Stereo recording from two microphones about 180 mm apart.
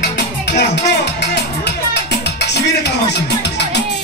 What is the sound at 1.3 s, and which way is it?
Music, 70° left (ahead or behind).